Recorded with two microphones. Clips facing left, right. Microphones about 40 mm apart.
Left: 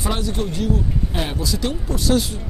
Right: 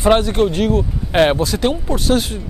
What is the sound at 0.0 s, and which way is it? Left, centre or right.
Speech, right.